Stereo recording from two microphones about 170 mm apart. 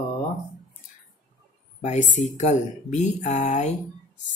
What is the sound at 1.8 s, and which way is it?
Speech, 45° left (ahead or behind).